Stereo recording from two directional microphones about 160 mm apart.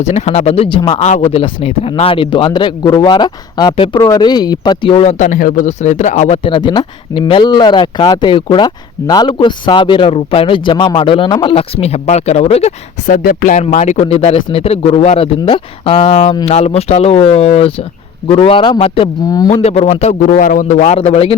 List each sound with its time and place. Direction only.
0.0 s speech: 45° left (ahead or behind)
1.0 s speech: 45° left (ahead or behind)
6.4 s speech: 30° left (ahead or behind)
13.1 s a man's voice: 55° left (ahead or behind); by 21.3 s 40° left (ahead or behind)